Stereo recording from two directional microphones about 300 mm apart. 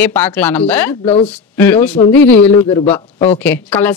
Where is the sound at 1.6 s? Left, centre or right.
Centre.